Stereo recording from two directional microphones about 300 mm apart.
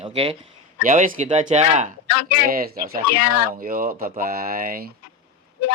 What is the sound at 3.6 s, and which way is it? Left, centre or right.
Speech, right.